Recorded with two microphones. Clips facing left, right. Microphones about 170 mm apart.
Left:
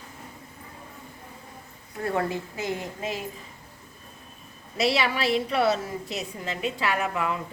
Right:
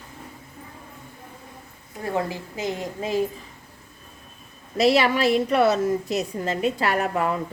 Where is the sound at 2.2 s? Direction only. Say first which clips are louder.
Right 3 dB; 20° right (ahead or behind).